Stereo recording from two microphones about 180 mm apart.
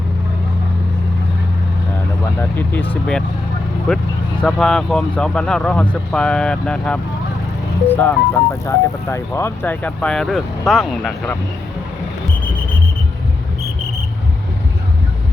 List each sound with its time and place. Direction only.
2.4 s speech: 10° left (ahead or behind)